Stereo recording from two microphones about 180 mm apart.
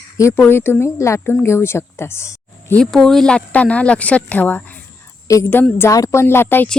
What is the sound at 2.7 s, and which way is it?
A woman's voice, 5° left (ahead or behind).